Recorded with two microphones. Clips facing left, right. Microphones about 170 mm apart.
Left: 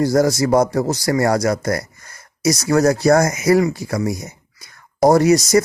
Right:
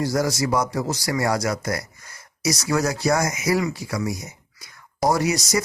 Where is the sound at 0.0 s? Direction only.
50° left (ahead or behind).